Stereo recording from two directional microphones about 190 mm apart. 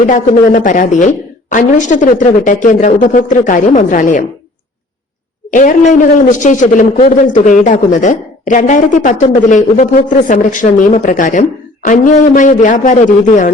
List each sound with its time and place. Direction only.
0.0 s a woman's voice: 45° left (ahead or behind)
5.5 s a woman's voice: 40° left (ahead or behind)